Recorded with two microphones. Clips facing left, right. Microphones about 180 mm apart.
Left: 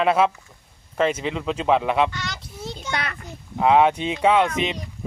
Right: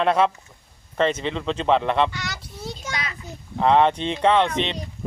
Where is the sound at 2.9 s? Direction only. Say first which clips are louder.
Left 6 dB; 60° left (ahead or behind).